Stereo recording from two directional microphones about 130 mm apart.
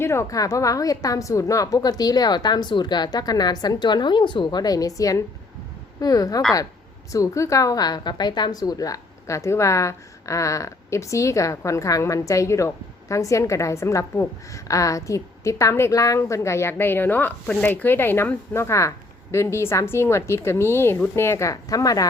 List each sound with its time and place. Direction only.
0.0 s a woman's voice: 20° left (ahead or behind)